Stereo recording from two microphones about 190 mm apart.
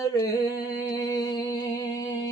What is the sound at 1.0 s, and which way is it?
Music, 20° left (ahead or behind).